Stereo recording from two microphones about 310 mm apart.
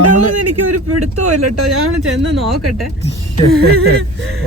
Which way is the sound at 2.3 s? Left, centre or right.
Centre.